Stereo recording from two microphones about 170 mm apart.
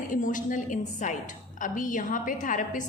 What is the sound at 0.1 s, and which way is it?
A woman's voice, 50° left (ahead or behind).